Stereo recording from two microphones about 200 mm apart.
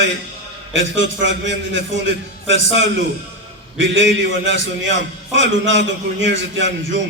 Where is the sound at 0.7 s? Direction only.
65° right (ahead or behind).